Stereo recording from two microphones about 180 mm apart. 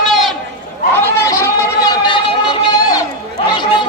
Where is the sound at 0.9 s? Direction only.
15° left (ahead or behind).